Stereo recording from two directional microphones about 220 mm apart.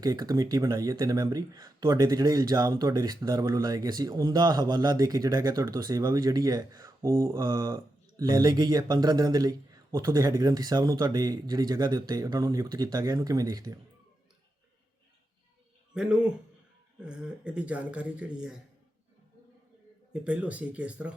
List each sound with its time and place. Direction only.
0.0 s speech: 15° right (ahead or behind)
16.0 s speech: 5° right (ahead or behind)
20.1 s speech: 5° right (ahead or behind)